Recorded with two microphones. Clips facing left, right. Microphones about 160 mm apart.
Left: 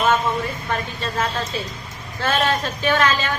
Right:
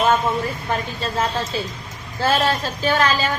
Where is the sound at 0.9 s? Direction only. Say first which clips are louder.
Right 1 dB; 30° right (ahead or behind).